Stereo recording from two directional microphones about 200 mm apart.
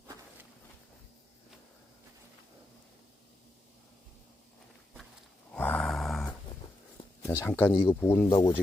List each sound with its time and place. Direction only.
5.5 s grunt: 5° left (ahead or behind)
7.3 s speech: 10° left (ahead or behind)
8.3 s speech: 25° left (ahead or behind)